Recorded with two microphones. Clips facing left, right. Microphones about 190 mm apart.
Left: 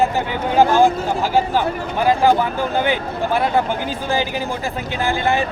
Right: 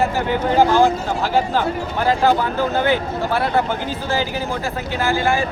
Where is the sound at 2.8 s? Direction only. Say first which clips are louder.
Right 1 dB; 15° left (ahead or behind).